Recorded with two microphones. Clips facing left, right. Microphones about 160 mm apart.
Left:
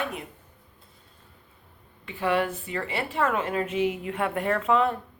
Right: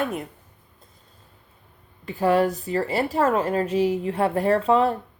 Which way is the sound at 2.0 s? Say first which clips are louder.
Right 6 dB; 40° right (ahead or behind).